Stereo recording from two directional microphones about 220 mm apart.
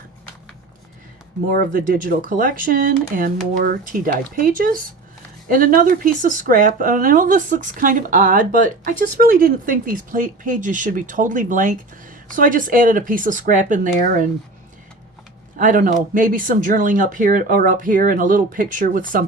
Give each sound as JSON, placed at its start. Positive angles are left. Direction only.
{"t": 1.5, "sound": "speech", "side_deg": -40}
{"t": 15.5, "sound": "speech", "side_deg": -40}